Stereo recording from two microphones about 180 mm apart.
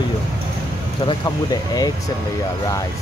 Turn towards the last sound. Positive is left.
turn(degrees=20)  # may be behind; listen again after turning